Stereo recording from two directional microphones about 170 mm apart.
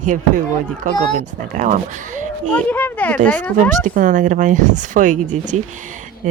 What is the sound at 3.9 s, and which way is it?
Speech, 50° right (ahead or behind).